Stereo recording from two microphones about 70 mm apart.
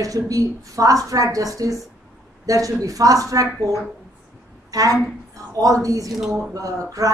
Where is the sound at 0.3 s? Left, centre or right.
Right.